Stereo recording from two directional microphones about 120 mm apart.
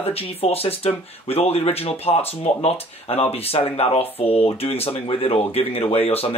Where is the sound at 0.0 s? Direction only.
55° left (ahead or behind).